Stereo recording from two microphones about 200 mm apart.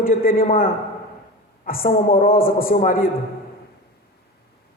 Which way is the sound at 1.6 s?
45° left (ahead or behind).